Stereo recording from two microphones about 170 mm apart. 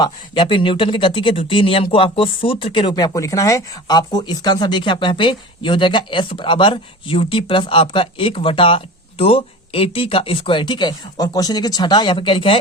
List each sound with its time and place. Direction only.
0.0 s speech: 30° left (ahead or behind)